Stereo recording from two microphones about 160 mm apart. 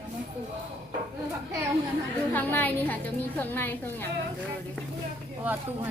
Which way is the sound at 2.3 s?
10° left (ahead or behind).